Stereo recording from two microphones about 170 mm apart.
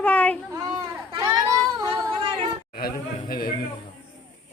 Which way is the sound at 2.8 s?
60° left (ahead or behind).